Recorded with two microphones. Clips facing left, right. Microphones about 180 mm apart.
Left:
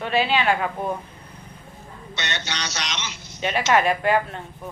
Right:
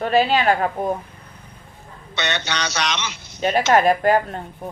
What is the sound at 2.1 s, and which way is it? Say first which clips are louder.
A man's voice: right 6 dB; 60° right (ahead or behind).